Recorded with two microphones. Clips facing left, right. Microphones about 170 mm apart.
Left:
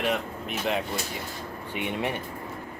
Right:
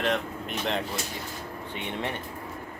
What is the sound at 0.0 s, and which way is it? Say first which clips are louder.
Speech: even; 5° left (ahead or behind).